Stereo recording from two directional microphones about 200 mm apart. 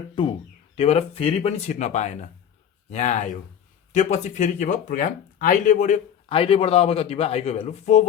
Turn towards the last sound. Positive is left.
turn(degrees=35)  # may be behind; listen again after turning